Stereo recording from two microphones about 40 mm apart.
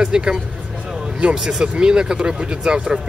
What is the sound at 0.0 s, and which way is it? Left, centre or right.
Speech, centre.